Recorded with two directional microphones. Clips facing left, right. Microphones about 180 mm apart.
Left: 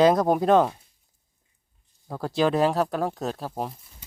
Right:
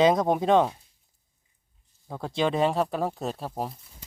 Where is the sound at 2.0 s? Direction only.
Centre (ahead or behind).